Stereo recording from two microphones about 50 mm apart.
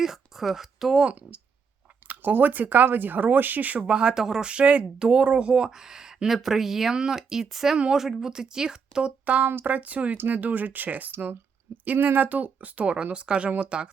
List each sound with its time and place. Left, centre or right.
0.0 s speech: centre
1.0 s speech: right
3.8 s speech: right
4.4 s speech: right
9.2 s speech: right